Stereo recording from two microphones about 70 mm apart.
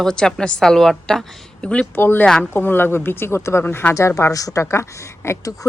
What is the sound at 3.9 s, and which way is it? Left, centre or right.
Speech, left.